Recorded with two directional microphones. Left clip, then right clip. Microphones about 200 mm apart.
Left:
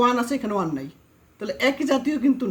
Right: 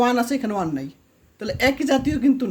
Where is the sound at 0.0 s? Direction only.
25° right (ahead or behind).